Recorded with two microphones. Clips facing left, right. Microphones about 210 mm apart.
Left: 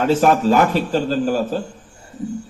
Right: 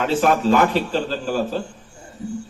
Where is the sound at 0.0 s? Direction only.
40° left (ahead or behind).